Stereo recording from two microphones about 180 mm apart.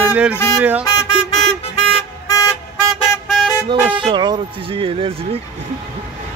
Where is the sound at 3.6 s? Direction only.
25° right (ahead or behind).